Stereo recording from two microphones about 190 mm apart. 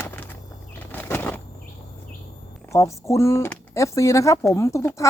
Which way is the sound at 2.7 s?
15° left (ahead or behind).